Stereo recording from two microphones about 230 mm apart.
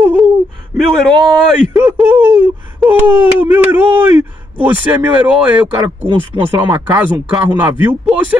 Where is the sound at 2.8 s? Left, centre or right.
Centre.